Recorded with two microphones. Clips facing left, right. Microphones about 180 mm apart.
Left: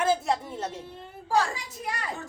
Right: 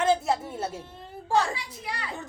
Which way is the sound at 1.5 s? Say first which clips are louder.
Left 2 dB; 45° left (ahead or behind).